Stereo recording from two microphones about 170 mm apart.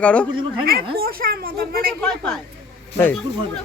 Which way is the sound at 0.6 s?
60° right (ahead or behind).